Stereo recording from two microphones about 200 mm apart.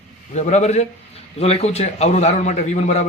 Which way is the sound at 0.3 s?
35° left (ahead or behind).